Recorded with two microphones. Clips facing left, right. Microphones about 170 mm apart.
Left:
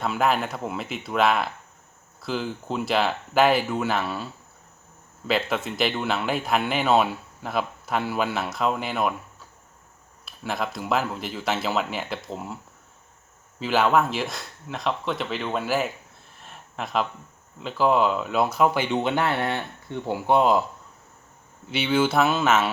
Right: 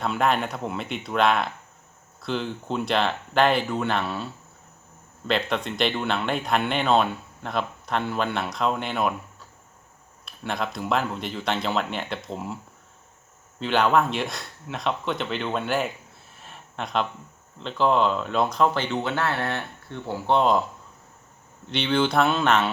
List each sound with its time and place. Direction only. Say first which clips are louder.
0.0 s speech: even; centre (ahead or behind)
5.3 s speech: even; 5° left (ahead or behind)
13.6 s speech: even; 5° left (ahead or behind)
16.3 s a sound: even; centre (ahead or behind)
17.6 s speech: left 1 dB; 5° left (ahead or behind)
21.7 s speech: left 1 dB; 5° left (ahead or behind)